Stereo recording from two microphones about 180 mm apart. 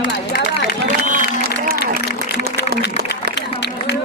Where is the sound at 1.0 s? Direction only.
50° right (ahead or behind).